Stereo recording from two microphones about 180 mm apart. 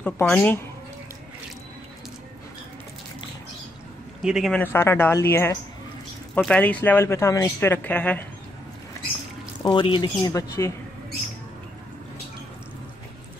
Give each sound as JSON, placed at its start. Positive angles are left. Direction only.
{"t": 0.0, "sound": "speech", "side_deg": 10}
{"t": 4.2, "sound": "a man's voice", "side_deg": -5}
{"t": 4.6, "sound": "speech", "side_deg": 10}
{"t": 9.6, "sound": "speech", "side_deg": 25}